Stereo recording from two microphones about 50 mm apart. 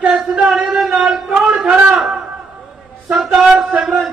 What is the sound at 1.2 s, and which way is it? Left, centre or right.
Speech, centre.